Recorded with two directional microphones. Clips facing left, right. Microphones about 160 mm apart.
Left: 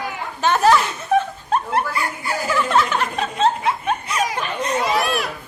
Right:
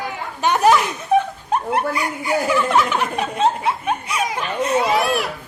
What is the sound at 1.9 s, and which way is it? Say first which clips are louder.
Snicker: right 3 dB; 15° right (ahead or behind).